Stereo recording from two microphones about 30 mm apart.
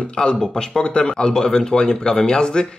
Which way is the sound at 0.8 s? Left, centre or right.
Left.